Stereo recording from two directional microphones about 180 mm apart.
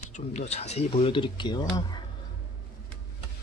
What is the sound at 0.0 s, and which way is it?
Speech, 40° left (ahead or behind).